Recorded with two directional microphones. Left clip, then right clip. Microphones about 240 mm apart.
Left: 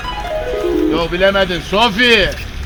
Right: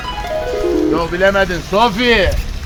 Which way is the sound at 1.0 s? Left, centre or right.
Left.